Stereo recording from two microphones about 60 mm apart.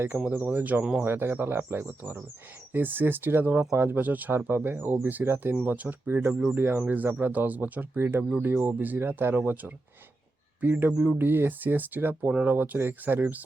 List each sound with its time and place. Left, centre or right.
0.3 s speech: right
1.0 s speech: right
4.3 s speech: right
5.6 s speech: right
6.6 s speech: right
6.8 s speech: right
7.9 s speech: right
10.9 s speech: centre
11.2 s speech: right
12.3 s speech: right
12.5 s speech: right